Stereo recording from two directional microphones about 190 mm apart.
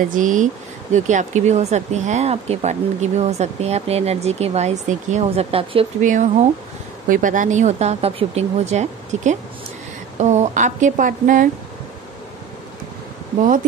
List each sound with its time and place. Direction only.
0.1 s speech: 45° right (ahead or behind)
5.9 s speech: 40° right (ahead or behind)